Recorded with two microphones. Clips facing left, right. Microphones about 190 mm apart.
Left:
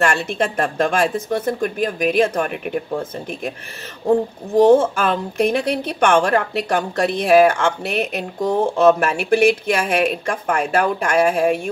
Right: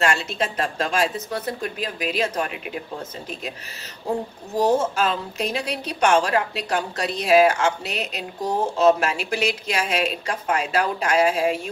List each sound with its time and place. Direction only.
0.0 s speech: 55° left (ahead or behind)
4.6 s a woman's voice: 55° left (ahead or behind)